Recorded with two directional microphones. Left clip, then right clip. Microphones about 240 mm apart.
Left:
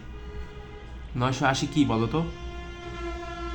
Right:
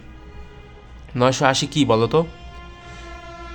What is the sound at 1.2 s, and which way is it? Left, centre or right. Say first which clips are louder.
A man's voice: right 8 dB; right.